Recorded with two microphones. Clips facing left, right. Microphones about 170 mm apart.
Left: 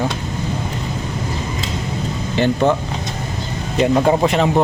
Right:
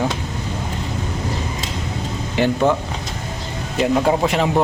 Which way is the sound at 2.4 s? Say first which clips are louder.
Left 1 dB; 10° right (ahead or behind).